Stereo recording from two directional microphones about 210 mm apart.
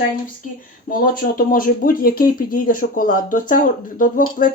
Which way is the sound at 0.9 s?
40° left (ahead or behind).